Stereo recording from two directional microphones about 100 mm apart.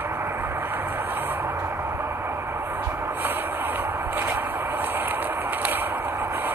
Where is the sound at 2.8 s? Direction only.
20° right (ahead or behind).